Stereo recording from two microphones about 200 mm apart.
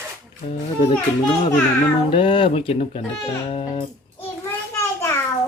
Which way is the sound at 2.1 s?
25° left (ahead or behind).